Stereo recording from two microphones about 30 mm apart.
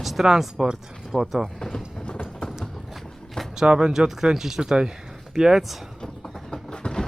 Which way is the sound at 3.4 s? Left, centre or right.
Centre.